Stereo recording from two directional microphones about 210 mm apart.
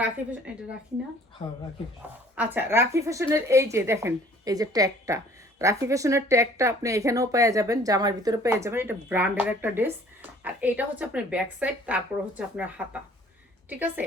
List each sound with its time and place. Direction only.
0.0 s speech: 5° right (ahead or behind)
1.4 s speech: 35° left (ahead or behind)
2.0 s speech: 5° right (ahead or behind)